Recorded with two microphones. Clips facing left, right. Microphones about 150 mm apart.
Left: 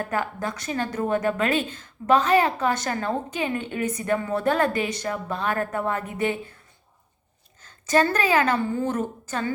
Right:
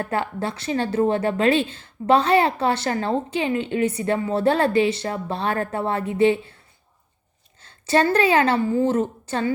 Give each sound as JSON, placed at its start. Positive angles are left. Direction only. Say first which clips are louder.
{"t": 0.0, "sound": "a woman's voice", "louder": "right 2 dB", "side_deg": -30}
{"t": 7.9, "sound": "a woman's voice", "louder": "right 3 dB", "side_deg": -30}